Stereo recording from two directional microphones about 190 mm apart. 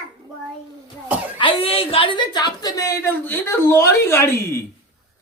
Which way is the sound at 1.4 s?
25° left (ahead or behind).